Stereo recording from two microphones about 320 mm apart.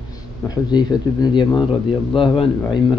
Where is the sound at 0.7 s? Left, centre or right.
Centre.